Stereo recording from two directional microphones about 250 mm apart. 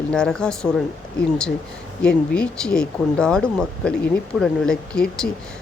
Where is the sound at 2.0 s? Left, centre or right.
Centre.